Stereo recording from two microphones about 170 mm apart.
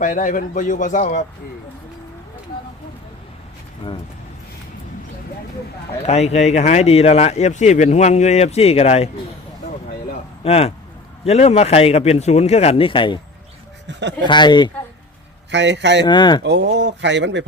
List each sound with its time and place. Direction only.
0.0 s a man's voice: 50° left (ahead or behind)
6.1 s speech: 40° left (ahead or behind)
10.4 s speech: 35° left (ahead or behind)
13.8 s speech: 90° right
14.3 s speech: 25° left (ahead or behind)
15.4 s speech: 90° right
16.0 s speech: 25° left (ahead or behind)
16.4 s speech: 85° right